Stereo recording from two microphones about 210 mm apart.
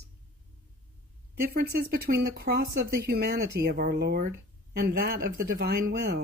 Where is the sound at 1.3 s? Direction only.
45° right (ahead or behind).